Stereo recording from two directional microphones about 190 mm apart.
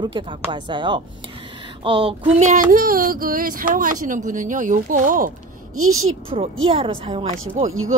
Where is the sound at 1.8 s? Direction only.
25° right (ahead or behind); by 5.3 s 45° right (ahead or behind).